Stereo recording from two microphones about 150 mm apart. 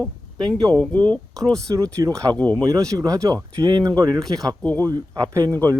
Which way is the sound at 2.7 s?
25° right (ahead or behind).